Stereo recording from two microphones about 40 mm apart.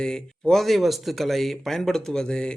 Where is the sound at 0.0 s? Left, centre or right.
Centre.